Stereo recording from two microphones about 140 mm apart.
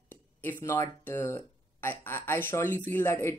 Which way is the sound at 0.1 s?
15° left (ahead or behind).